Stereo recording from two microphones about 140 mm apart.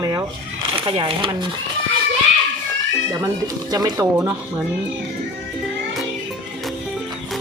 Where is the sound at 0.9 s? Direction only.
35° right (ahead or behind).